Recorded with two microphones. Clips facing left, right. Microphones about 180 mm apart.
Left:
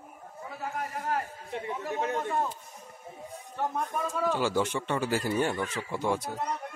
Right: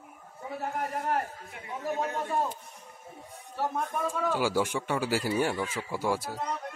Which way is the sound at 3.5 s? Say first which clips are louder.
Even; 5° right (ahead or behind).